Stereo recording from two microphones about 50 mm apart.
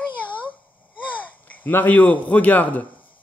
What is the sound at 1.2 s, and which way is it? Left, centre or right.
A man's voice, left.